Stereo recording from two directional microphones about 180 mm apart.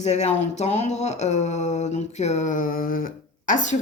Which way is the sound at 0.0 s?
40° left (ahead or behind).